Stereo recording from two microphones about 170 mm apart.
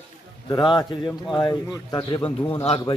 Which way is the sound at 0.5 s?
25° left (ahead or behind).